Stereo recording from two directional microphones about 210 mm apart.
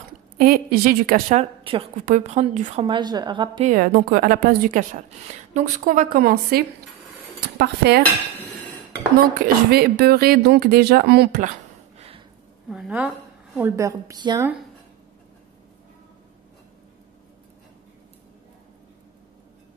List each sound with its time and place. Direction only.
0.4 s a woman's voice: 45° right (ahead or behind); by 3.6 s 20° right (ahead or behind)
3.6 s a woman's voice: 40° right (ahead or behind)
9.7 s speech: 50° right (ahead or behind)
12.6 s a woman's voice: 5° right (ahead or behind)